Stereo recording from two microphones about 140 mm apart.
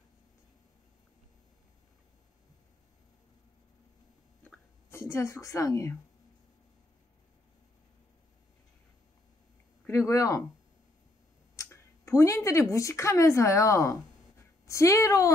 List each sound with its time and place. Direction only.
4.5 s speech: 20° left (ahead or behind)
9.8 s speech: 20° left (ahead or behind)
11.5 s a woman's voice: 20° left (ahead or behind)